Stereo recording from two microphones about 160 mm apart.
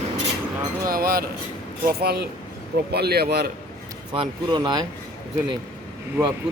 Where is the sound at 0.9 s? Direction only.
70° right (ahead or behind).